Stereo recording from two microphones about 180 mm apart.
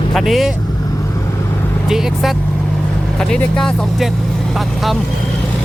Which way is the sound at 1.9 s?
Centre (ahead or behind).